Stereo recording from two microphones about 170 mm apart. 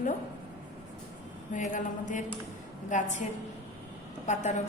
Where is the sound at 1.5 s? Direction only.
50° left (ahead or behind).